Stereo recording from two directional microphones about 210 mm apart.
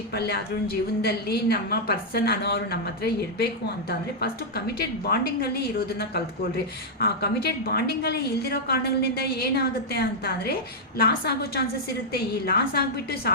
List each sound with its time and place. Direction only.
0.1 s a woman's voice: 50° left (ahead or behind)